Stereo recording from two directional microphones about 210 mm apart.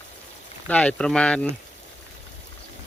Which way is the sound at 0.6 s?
5° left (ahead or behind).